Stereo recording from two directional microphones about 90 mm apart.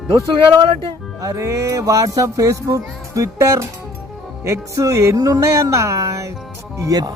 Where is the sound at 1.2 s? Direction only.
40° right (ahead or behind).